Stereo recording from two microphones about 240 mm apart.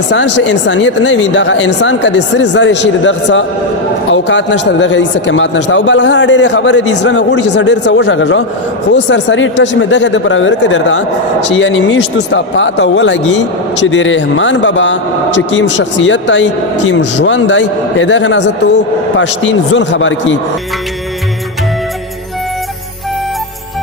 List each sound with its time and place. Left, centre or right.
0.1 s speech: left